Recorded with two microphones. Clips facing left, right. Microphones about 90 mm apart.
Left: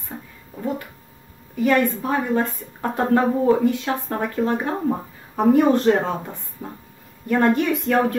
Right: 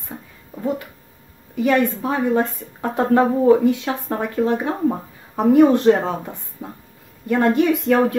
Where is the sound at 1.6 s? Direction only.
20° right (ahead or behind).